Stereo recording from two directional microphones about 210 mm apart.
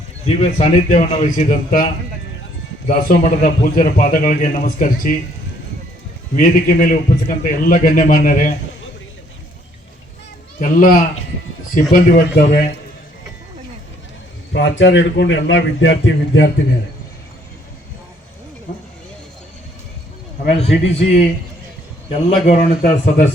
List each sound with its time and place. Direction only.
0.6 s a man's voice: 35° left (ahead or behind)
6.3 s a man's voice: 40° left (ahead or behind)
10.6 s a man's voice: 40° left (ahead or behind)
14.5 s a man's voice: 60° left (ahead or behind)
20.4 s a man's voice: 30° left (ahead or behind)